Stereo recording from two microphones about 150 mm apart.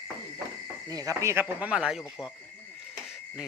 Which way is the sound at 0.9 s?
20° right (ahead or behind).